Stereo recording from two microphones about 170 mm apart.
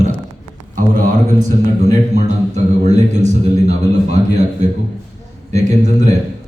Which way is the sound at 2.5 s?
45° right (ahead or behind).